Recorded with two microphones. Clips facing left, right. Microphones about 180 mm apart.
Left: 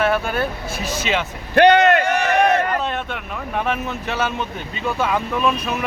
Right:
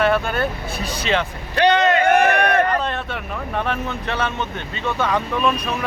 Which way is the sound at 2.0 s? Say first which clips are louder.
Right 1 dB; 55° right (ahead or behind).